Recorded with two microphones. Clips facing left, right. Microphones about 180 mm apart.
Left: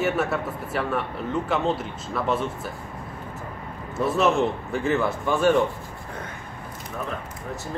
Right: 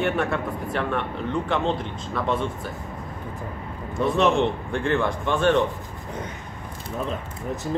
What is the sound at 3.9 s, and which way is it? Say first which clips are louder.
Speech: right 1 dB; 5° left (ahead or behind).